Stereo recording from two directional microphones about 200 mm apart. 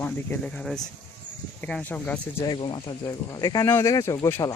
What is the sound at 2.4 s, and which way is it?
Speech, 25° left (ahead or behind).